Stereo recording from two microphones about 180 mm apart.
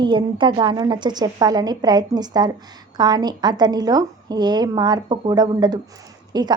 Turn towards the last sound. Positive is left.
turn(degrees=-25)  # may be behind; listen again after turning